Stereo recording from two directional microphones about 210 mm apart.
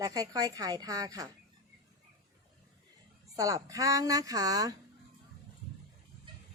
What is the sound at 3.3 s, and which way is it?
A woman's voice, 15° right (ahead or behind).